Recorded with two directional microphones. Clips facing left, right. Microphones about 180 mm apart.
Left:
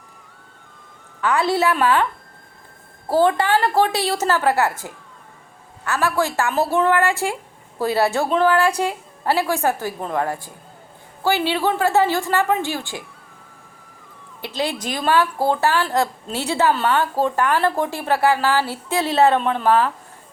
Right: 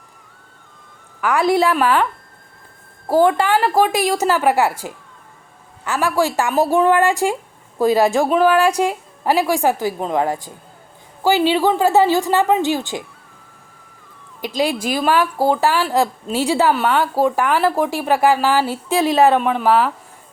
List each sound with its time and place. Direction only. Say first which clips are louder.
1.3 s speech: right 3 dB; 15° right (ahead or behind)
3.1 s speech: right 2 dB; 10° right (ahead or behind)
14.4 s speech: right 5 dB; 15° right (ahead or behind)